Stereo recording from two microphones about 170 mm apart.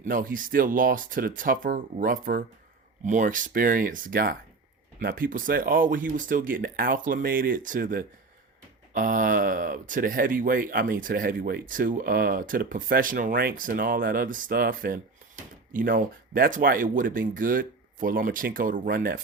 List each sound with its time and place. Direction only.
0.0 s speech: 50° right (ahead or behind)